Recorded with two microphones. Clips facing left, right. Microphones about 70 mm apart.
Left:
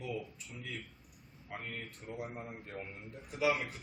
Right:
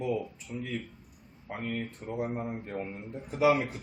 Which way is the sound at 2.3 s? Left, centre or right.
Right.